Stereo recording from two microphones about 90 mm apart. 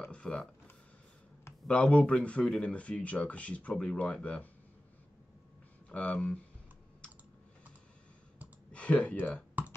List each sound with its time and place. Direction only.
0.1 s speech: 10° left (ahead or behind)
1.7 s speech: 15° left (ahead or behind)
5.9 s speech: 15° left (ahead or behind)
8.7 s speech: 15° left (ahead or behind)
9.6 s computer keyboard: 20° right (ahead or behind)